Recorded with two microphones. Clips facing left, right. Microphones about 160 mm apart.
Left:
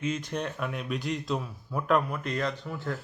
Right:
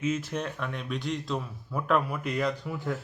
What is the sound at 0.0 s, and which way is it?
A man's voice, 5° right (ahead or behind).